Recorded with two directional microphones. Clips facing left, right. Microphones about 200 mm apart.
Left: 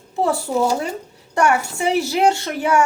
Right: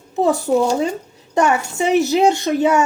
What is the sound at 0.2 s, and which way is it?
A child's voice, 20° right (ahead or behind).